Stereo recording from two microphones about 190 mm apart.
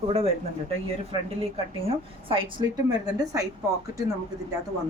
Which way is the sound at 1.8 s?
30° right (ahead or behind).